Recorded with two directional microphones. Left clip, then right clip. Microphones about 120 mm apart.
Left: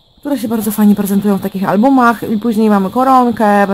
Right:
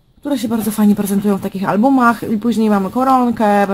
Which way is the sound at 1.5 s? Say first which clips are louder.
Left 3 dB; 30° left (ahead or behind).